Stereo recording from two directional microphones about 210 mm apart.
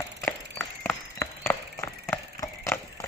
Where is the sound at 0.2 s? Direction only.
10° left (ahead or behind).